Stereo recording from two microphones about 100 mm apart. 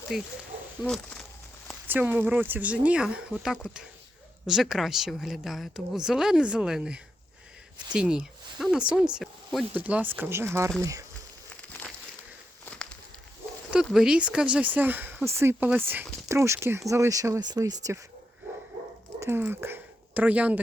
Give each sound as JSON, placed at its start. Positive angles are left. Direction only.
{"t": 0.1, "sound": "a woman's voice", "side_deg": -5}
{"t": 0.9, "sound": "speech", "side_deg": 5}
{"t": 1.9, "sound": "a woman's voice", "side_deg": -15}
{"t": 9.7, "sound": "speech", "side_deg": -15}
{"t": 12.7, "sound": "a sound", "side_deg": 10}
{"t": 13.7, "sound": "speech", "side_deg": -5}
{"t": 19.4, "sound": "speech", "side_deg": -20}